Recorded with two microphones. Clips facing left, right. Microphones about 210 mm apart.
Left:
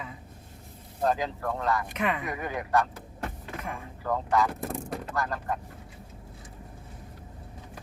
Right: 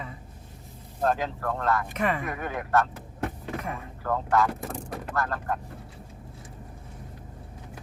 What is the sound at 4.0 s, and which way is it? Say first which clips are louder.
Speech: right 1 dB; centre (ahead or behind).